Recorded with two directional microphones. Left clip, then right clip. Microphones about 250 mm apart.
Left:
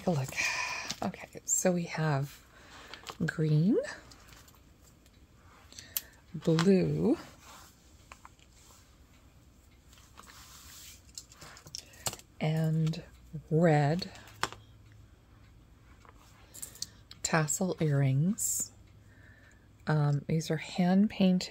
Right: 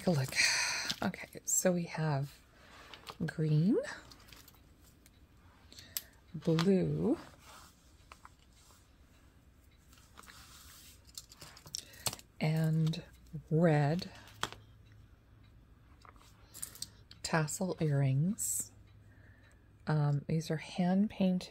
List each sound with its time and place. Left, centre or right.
0.0 s a sound: centre
1.6 s speech: centre
5.7 s scissors: centre
11.7 s typing: centre
16.5 s a sound: centre
19.8 s speech: centre